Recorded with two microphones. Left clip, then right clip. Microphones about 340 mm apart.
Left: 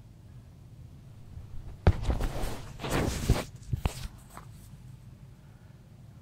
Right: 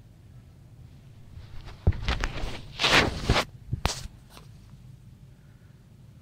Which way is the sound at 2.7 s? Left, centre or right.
Right.